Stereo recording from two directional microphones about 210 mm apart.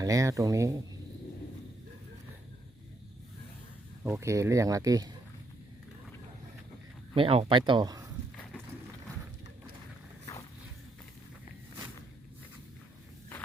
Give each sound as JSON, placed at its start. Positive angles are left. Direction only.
{"t": 0.0, "sound": "speech", "side_deg": -15}
{"t": 4.0, "sound": "speech", "side_deg": -10}
{"t": 7.1, "sound": "speech", "side_deg": -25}